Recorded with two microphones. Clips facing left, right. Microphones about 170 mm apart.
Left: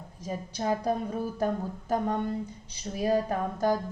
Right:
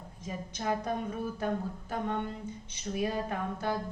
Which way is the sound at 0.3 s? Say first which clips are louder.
Left 4 dB; 35° left (ahead or behind).